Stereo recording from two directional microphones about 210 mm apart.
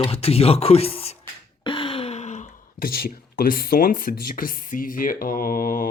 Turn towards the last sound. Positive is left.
turn(degrees=45)  # may be behind; listen again after turning